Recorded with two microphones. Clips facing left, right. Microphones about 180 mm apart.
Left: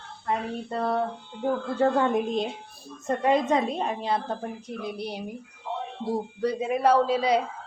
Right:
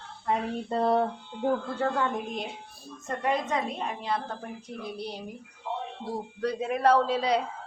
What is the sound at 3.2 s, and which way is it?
Speech, 30° left (ahead or behind).